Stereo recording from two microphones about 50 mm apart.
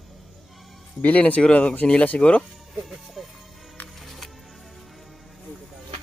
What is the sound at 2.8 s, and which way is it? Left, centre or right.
Music, centre.